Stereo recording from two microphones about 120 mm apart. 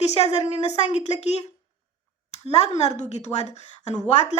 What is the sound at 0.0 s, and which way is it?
A woman's voice, 65° left (ahead or behind).